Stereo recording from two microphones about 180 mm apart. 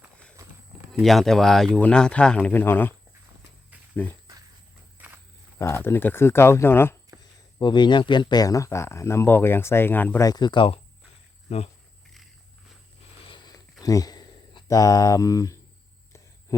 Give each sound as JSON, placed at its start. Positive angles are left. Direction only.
{"t": 0.4, "sound": "clip-clop", "side_deg": -15}
{"t": 0.9, "sound": "speech", "side_deg": 0}
{"t": 4.9, "sound": "walk", "side_deg": -10}
{"t": 5.5, "sound": "speech", "side_deg": 15}
{"t": 7.6, "sound": "speech", "side_deg": 25}
{"t": 13.2, "sound": "a sound", "side_deg": 25}
{"t": 13.8, "sound": "speech", "side_deg": 20}